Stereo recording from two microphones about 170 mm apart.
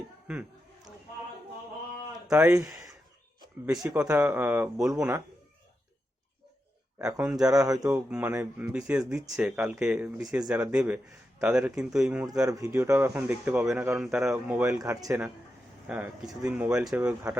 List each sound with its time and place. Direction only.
2.2 s speech: 5° right (ahead or behind)
2.6 s speech: 15° right (ahead or behind)
3.9 s speech: 10° right (ahead or behind)
7.3 s a man's voice: 5° right (ahead or behind)
7.5 s speech: 20° right (ahead or behind)
8.9 s a man's voice: 5° right (ahead or behind)
12.4 s a man's voice: 20° right (ahead or behind)
14.8 s speech: 20° right (ahead or behind)
15.9 s speech: 5° right (ahead or behind)